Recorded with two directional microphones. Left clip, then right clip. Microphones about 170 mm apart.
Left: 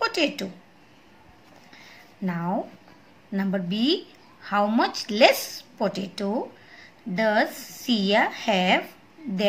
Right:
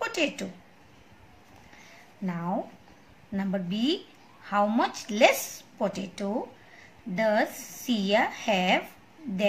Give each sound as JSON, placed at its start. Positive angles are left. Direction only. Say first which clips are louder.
{"t": 0.0, "sound": "a woman's voice", "louder": "left 4 dB", "side_deg": 15}
{"t": 2.2, "sound": "a woman's voice", "louder": "left 3 dB", "side_deg": 20}